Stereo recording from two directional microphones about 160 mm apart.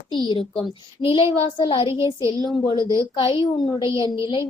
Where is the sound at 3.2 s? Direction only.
30° left (ahead or behind).